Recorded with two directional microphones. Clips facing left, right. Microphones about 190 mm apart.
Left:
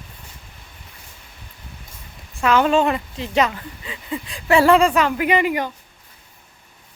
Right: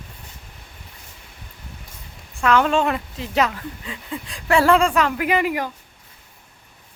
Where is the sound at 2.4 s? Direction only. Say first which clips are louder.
Left 2 dB; centre (ahead or behind).